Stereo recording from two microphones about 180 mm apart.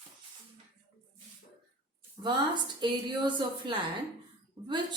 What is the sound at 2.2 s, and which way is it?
A woman's voice, 25° right (ahead or behind).